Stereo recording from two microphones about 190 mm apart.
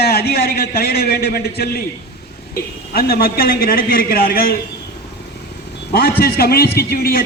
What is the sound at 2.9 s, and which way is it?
A man's voice, 50° left (ahead or behind).